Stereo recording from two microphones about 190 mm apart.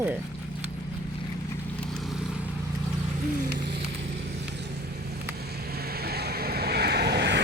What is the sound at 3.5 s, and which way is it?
Vehicle, 60° right (ahead or behind).